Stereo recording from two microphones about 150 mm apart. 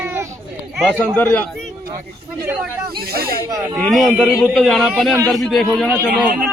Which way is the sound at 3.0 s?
90° right.